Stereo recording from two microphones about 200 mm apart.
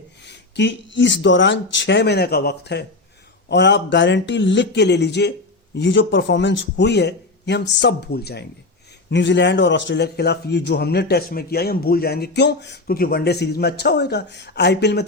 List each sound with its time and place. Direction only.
0.2 s a man's voice: 60° left (ahead or behind)